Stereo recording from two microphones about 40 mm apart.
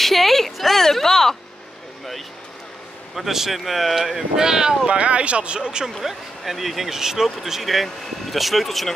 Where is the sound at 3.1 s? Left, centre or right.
Centre.